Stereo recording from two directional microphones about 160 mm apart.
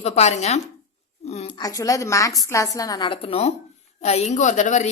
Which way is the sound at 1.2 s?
45° left (ahead or behind).